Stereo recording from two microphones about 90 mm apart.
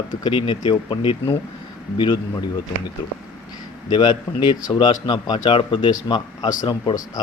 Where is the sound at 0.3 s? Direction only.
70° left (ahead or behind).